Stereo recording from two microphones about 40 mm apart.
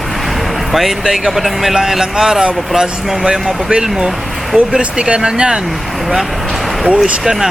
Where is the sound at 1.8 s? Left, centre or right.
Centre.